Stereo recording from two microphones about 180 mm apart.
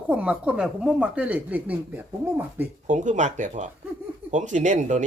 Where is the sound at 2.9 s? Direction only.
45° right (ahead or behind).